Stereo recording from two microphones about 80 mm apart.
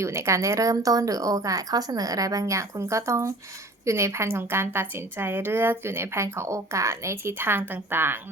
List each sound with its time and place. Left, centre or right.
0.0 s a woman's voice: right